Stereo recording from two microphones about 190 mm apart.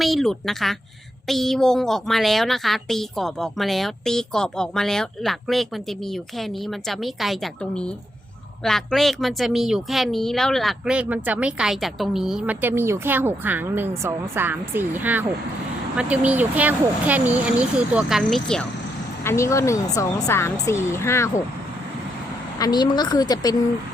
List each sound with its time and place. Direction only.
0.0 s speech: centre (ahead or behind)
19.2 s speech: 15° left (ahead or behind)
22.5 s a woman's voice: 20° left (ahead or behind)